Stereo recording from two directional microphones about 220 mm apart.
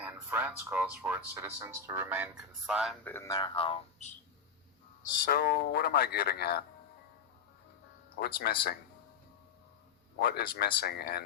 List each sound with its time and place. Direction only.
0.0 s speech: 10° right (ahead or behind); by 3.8 s 25° left (ahead or behind)
5.2 s speech: 45° left (ahead or behind)
8.2 s speech: 45° left (ahead or behind)
10.2 s speech: 45° left (ahead or behind)